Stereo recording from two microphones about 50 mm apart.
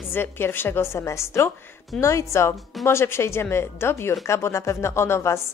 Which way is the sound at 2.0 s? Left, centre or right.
Left.